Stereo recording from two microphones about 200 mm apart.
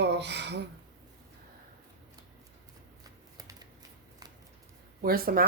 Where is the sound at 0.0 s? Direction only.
60° right (ahead or behind).